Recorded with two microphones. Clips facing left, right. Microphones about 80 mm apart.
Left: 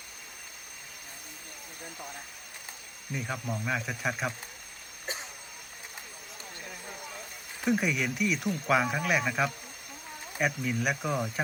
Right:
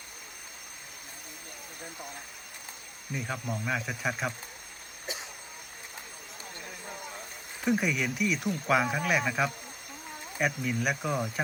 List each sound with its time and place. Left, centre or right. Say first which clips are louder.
3.2 s speech: even; centre
5.1 s vehicle: left 1 dB; left
7.6 s speech: even; centre